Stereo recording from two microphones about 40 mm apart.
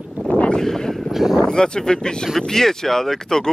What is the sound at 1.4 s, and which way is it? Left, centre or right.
Speech, left.